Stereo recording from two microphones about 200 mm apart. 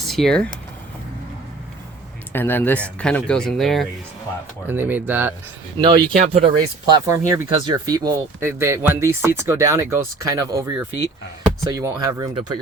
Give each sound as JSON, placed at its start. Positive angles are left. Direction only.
{"t": 0.0, "sound": "speech", "side_deg": 0}
{"t": 2.3, "sound": "speech", "side_deg": 10}
{"t": 4.6, "sound": "speech", "side_deg": -10}
{"t": 5.8, "sound": "speech", "side_deg": -20}
{"t": 6.8, "sound": "speech", "side_deg": -20}